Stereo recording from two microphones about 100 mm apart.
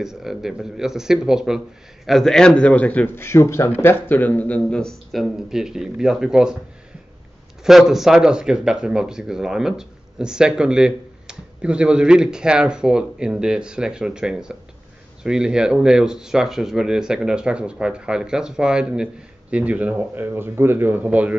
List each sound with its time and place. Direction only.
0.0 s a man's voice: 5° right (ahead or behind)
7.6 s speech: 5° right (ahead or behind)